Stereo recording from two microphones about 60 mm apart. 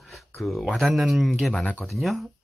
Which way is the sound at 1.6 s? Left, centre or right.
Left.